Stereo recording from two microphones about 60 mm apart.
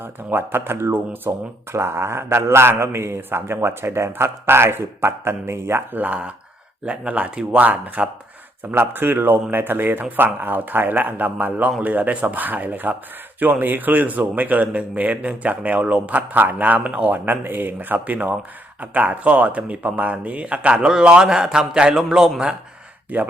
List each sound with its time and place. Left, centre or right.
0.0 s a man's voice: right
5.9 s a man's voice: right
8.7 s a man's voice: right; by 22.3 s centre